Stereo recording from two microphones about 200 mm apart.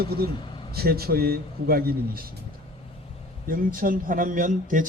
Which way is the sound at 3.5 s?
45° right (ahead or behind).